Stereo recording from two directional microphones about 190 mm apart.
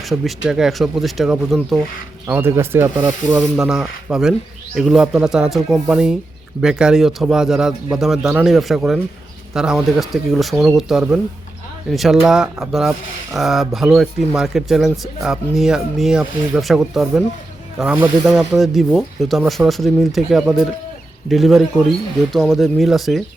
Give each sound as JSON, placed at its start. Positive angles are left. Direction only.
{"t": 0.1, "sound": "speech", "side_deg": 0}
{"t": 2.2, "sound": "speech", "side_deg": -15}